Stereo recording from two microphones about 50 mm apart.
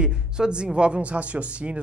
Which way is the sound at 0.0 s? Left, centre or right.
Centre.